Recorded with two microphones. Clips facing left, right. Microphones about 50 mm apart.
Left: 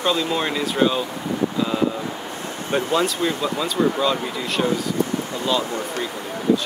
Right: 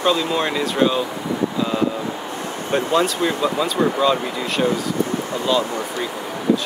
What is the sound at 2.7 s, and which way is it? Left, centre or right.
Speech, centre.